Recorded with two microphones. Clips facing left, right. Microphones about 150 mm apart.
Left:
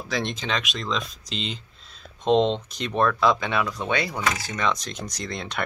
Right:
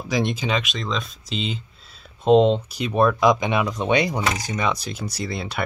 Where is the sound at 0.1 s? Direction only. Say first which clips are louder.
Right 5 dB; 10° right (ahead or behind).